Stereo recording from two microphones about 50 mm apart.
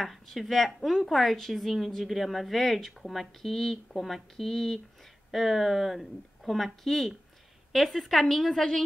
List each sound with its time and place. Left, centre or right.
0.0 s speech: centre